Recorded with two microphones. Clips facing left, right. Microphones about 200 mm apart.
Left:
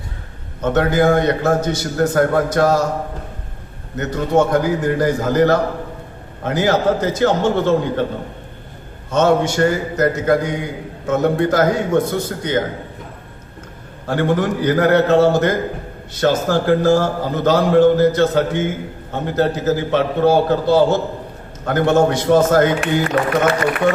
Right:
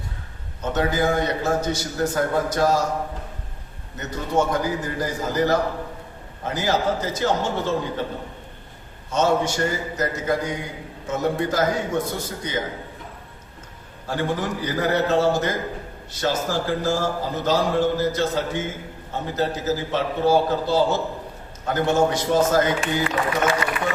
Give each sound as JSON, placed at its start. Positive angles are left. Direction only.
{"t": 0.6, "sound": "a man's voice", "side_deg": 60}
{"t": 3.9, "sound": "a man's voice", "side_deg": 65}
{"t": 9.1, "sound": "a man's voice", "side_deg": 60}
{"t": 14.1, "sound": "a man's voice", "side_deg": 60}